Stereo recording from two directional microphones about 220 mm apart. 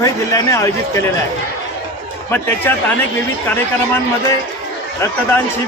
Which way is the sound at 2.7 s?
10° left (ahead or behind).